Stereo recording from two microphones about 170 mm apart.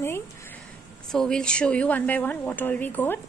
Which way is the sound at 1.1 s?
5° left (ahead or behind).